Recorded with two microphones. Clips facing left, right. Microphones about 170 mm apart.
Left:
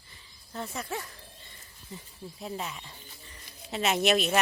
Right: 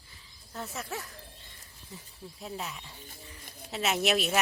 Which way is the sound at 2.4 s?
Centre (ahead or behind).